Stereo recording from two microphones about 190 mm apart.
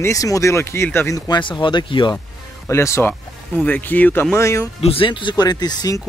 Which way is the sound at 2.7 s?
15° left (ahead or behind).